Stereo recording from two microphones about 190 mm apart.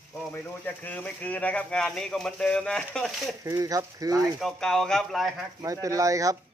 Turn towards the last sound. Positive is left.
turn(degrees=-15)  # may be behind; listen again after turning